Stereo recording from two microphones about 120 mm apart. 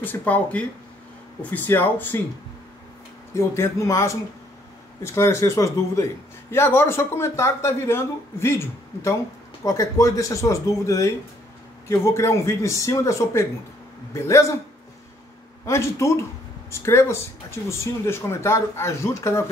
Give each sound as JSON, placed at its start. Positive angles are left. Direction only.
{"t": 0.0, "sound": "speech", "side_deg": 15}
{"t": 3.3, "sound": "speech", "side_deg": 20}
{"t": 15.6, "sound": "speech", "side_deg": 25}